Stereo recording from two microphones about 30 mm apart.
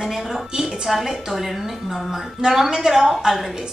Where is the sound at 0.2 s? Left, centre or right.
Centre.